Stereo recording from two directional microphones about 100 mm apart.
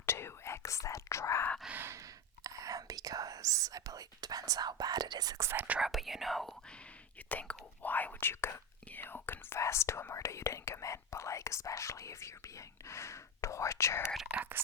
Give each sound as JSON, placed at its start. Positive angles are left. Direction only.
{"t": 0.0, "sound": "whispering", "side_deg": 25}
{"t": 1.7, "sound": "speech", "side_deg": -20}
{"t": 2.0, "sound": "speech", "side_deg": -35}
{"t": 5.5, "sound": "speech", "side_deg": -15}
{"t": 5.8, "sound": "speech", "side_deg": 0}
{"t": 7.3, "sound": "speech", "side_deg": 15}
{"t": 14.3, "sound": "speech", "side_deg": -20}